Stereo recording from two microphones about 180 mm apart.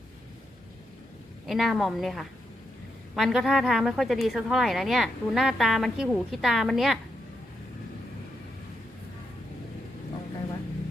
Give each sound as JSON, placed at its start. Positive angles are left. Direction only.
{"t": 1.5, "sound": "a woman's voice", "side_deg": 0}